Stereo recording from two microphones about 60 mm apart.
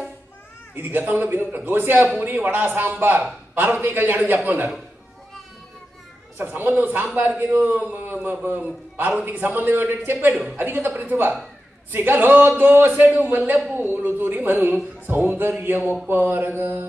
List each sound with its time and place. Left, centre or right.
0.7 s speech: right
6.3 s a man's voice: right
10.3 s a man's voice: right
10.6 s speech: right